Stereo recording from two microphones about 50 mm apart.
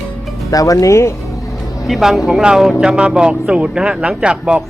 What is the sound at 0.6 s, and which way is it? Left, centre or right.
Speech, left.